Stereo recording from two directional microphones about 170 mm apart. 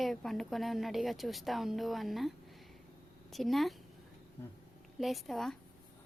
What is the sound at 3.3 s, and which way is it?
Speech, centre (ahead or behind).